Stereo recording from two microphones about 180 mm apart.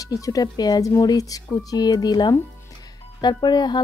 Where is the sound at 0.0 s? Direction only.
20° left (ahead or behind).